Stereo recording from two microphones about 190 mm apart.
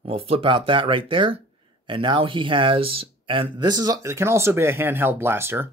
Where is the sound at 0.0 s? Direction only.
30° right (ahead or behind).